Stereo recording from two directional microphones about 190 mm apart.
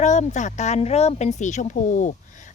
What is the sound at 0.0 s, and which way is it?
Speech, 40° left (ahead or behind).